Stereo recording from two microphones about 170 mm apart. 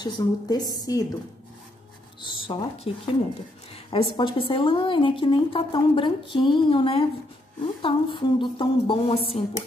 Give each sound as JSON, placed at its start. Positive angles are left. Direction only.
{"t": 0.0, "sound": "a woman's voice", "side_deg": 25}
{"t": 2.2, "sound": "a woman's voice", "side_deg": 30}
{"t": 7.6, "sound": "a sound", "side_deg": 30}